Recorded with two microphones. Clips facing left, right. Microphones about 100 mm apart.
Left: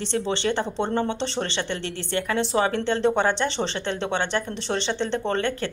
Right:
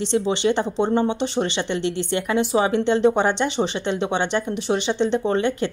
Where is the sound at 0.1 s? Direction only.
15° right (ahead or behind).